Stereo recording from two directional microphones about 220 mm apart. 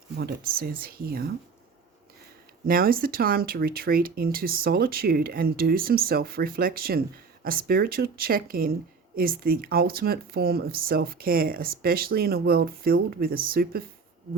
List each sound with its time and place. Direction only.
0.2 s speech: 45° right (ahead or behind)
2.6 s speech: 40° right (ahead or behind)